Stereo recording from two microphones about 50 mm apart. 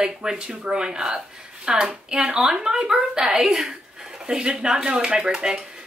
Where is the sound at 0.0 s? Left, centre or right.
Centre.